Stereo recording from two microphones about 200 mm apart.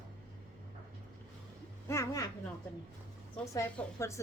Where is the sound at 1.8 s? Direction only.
15° left (ahead or behind).